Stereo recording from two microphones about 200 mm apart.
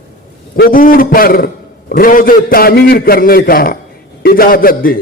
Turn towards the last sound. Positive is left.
turn(degrees=45)  # may be behind; listen again after turning